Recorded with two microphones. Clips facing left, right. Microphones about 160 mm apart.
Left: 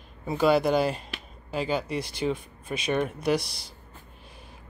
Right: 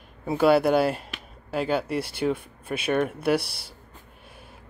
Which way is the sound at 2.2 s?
5° left (ahead or behind).